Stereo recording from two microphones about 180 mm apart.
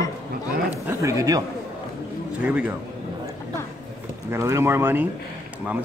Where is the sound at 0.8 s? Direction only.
15° right (ahead or behind).